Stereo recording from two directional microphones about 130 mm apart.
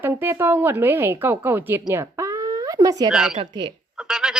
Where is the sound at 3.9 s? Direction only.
5° right (ahead or behind).